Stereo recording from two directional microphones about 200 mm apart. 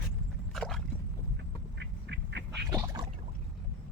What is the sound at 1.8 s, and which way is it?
Duck, 60° right (ahead or behind).